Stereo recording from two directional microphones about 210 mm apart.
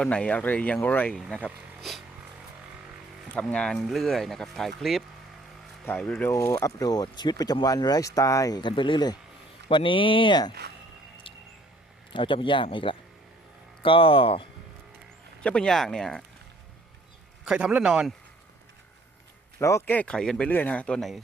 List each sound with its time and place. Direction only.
0.0 s speech: 5° left (ahead or behind)
3.3 s speech: 5° left (ahead or behind); by 10.5 s 20° left (ahead or behind)
12.1 s speech: 25° left (ahead or behind)
15.4 s speech: 5° left (ahead or behind)
17.4 s speech: 5° right (ahead or behind)
19.5 s speech: 15° left (ahead or behind)